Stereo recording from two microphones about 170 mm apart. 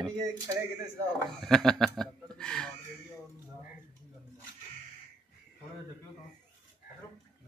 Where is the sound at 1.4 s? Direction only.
5° left (ahead or behind).